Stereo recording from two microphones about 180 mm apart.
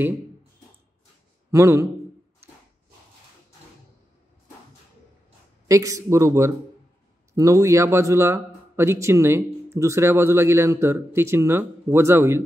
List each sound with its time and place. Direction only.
1.5 s speech: 15° right (ahead or behind)
5.7 s speech: 20° right (ahead or behind)